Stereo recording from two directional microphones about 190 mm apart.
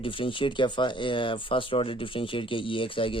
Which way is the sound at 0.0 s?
25° left (ahead or behind).